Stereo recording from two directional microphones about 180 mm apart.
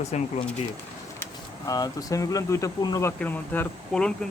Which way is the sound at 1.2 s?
20° left (ahead or behind).